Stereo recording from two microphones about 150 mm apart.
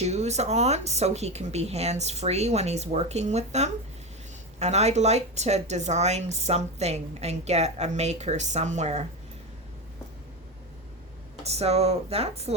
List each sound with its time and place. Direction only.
0.0 s speech: 45° right (ahead or behind)
11.4 s speech: 45° right (ahead or behind)